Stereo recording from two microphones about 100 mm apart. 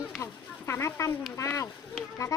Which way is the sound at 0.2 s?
25° left (ahead or behind).